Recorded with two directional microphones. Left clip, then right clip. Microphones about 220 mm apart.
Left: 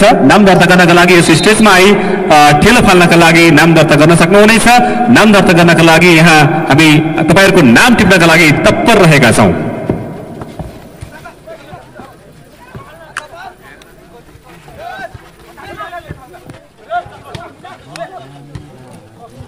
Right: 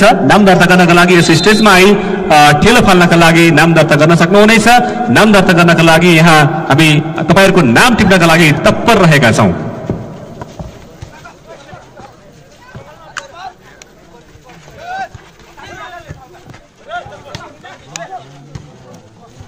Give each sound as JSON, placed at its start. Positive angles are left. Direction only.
{"t": 0.0, "sound": "a man's voice", "side_deg": 25}